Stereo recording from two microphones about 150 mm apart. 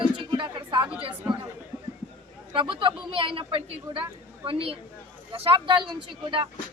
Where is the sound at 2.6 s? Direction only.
35° right (ahead or behind).